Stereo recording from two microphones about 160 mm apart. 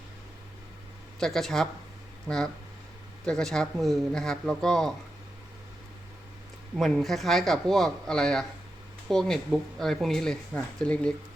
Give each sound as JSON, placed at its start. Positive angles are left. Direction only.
{"t": 1.2, "sound": "speech", "side_deg": 0}
{"t": 3.2, "sound": "speech", "side_deg": 5}
{"t": 6.7, "sound": "speech", "side_deg": 0}